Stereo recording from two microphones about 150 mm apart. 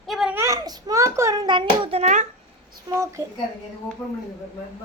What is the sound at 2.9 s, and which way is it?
Speech, 25° right (ahead or behind).